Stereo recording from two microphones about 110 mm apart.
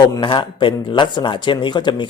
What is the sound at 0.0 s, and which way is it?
A man's voice, 45° left (ahead or behind).